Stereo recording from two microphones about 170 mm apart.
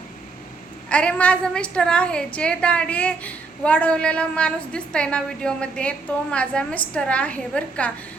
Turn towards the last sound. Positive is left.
turn(degrees=5)  # may be behind; listen again after turning